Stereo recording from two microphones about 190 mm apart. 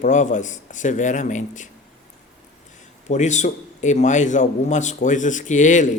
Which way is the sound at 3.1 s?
40° left (ahead or behind).